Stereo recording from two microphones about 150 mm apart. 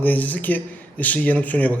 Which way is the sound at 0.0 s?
10° left (ahead or behind).